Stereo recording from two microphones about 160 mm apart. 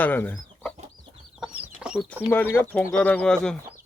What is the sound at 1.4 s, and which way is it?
Chicken, 5° right (ahead or behind).